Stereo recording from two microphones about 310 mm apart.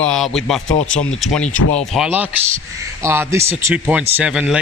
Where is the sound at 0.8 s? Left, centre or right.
Left.